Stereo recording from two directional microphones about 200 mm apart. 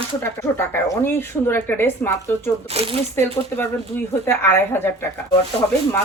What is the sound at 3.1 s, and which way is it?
Speech, 10° left (ahead or behind).